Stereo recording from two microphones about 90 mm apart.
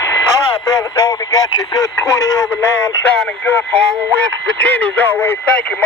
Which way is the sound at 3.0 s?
15° left (ahead or behind).